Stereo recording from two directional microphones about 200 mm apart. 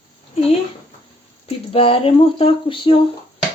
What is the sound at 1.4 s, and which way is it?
Speech, 30° left (ahead or behind).